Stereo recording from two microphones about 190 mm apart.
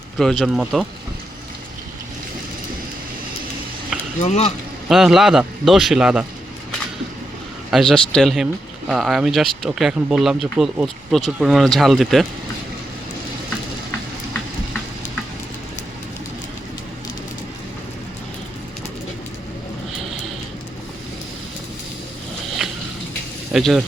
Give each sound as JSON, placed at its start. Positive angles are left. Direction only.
{"t": 0.2, "sound": "speech", "side_deg": 0}
{"t": 4.2, "sound": "speech", "side_deg": 35}
{"t": 4.9, "sound": "speech", "side_deg": 0}
{"t": 7.7, "sound": "speech", "side_deg": 0}
{"t": 22.6, "sound": "water", "side_deg": -5}
{"t": 23.5, "sound": "speech", "side_deg": 0}